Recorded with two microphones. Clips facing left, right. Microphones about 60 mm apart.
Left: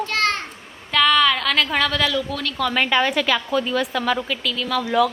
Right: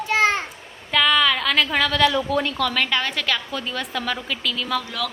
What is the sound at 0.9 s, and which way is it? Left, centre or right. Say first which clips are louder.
A woman's voice: left 2 dB; centre.